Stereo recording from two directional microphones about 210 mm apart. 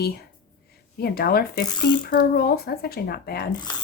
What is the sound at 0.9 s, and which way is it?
Speech, 45° left (ahead or behind).